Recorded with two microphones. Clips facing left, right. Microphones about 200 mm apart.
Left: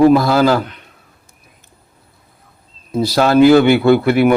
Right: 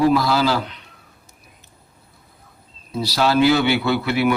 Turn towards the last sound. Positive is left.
turn(degrees=50)  # may be behind; listen again after turning